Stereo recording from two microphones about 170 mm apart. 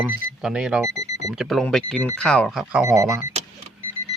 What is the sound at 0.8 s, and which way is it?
Alarm clock, 20° right (ahead or behind).